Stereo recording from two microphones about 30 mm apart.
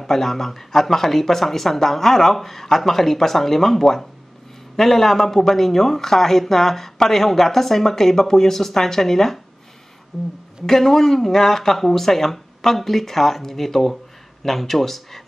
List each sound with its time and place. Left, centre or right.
0.0 s a woman's voice: centre